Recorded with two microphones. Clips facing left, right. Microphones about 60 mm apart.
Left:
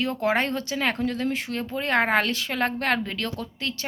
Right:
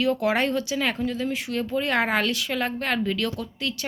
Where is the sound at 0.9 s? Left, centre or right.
Left.